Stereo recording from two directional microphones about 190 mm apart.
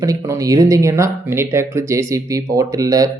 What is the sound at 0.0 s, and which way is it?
Speech, 15° right (ahead or behind).